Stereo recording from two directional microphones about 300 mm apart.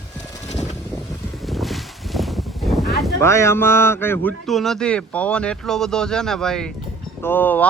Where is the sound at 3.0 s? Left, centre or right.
Centre.